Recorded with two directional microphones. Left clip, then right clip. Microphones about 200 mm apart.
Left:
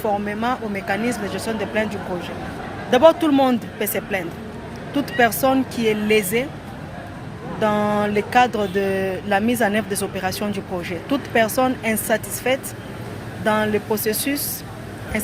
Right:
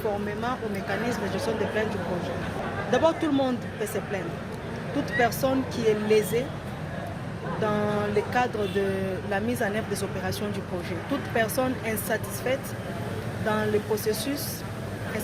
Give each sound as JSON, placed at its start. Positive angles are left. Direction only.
{"t": 0.3, "sound": "speech", "side_deg": 50}
{"t": 2.9, "sound": "speech", "side_deg": 55}
{"t": 7.6, "sound": "speech", "side_deg": 50}